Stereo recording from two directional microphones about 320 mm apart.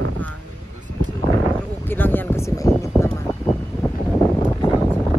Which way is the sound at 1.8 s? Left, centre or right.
Centre.